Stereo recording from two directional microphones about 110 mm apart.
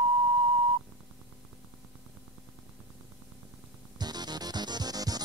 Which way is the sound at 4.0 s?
40° right (ahead or behind).